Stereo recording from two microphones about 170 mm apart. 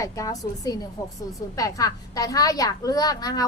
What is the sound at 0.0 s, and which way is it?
A woman's voice, 20° left (ahead or behind).